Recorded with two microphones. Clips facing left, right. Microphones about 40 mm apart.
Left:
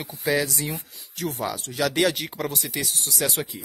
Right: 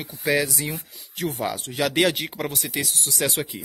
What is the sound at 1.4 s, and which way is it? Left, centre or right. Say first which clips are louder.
Speech: even; right.